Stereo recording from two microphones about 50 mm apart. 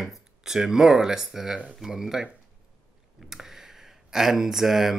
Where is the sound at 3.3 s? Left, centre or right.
Centre.